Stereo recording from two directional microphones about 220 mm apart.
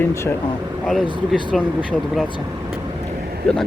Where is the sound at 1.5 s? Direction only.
5° right (ahead or behind).